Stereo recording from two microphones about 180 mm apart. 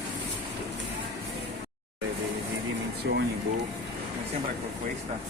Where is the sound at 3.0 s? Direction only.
80° right.